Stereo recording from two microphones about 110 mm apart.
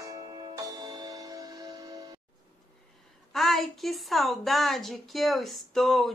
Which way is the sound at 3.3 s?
Centre (ahead or behind).